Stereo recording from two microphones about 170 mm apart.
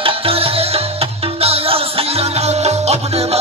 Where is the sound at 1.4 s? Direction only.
35° right (ahead or behind).